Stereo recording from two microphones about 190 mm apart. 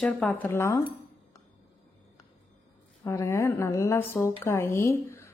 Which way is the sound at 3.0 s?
15° left (ahead or behind).